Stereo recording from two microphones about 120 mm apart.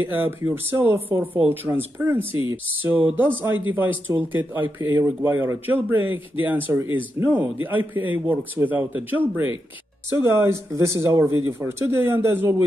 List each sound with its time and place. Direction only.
0.0 s speech: 15° right (ahead or behind)